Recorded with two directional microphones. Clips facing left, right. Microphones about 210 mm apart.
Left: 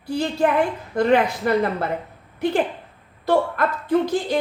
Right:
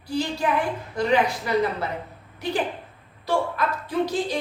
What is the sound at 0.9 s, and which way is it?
Speech, 55° left (ahead or behind).